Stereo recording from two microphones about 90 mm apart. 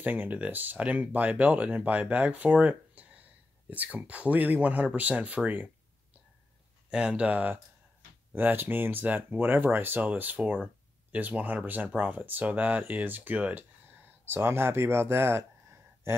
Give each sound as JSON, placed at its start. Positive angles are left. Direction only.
{"t": 0.0, "sound": "speech", "side_deg": -20}
{"t": 6.9, "sound": "speech", "side_deg": -10}